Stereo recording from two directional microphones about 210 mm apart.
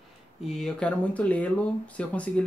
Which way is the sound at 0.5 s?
Centre (ahead or behind).